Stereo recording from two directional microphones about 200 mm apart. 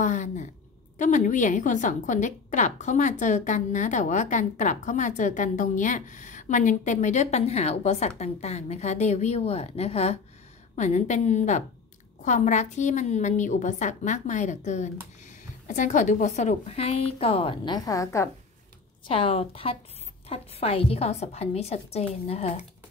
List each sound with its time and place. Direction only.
0.0 s a woman's voice: 35° left (ahead or behind); by 18.3 s 15° left (ahead or behind)
19.0 s a woman's voice: 25° left (ahead or behind)